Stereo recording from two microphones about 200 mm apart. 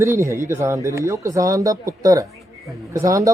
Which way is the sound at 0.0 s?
15° right (ahead or behind).